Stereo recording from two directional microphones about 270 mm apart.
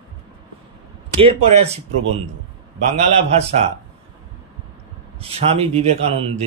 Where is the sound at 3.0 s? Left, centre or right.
Right.